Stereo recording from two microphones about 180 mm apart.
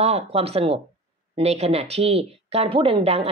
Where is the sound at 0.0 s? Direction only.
35° right (ahead or behind).